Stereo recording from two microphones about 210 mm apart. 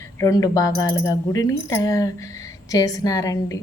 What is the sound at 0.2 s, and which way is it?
Speech, 15° left (ahead or behind).